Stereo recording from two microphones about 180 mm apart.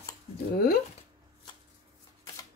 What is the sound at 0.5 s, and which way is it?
Speech, 60° left (ahead or behind).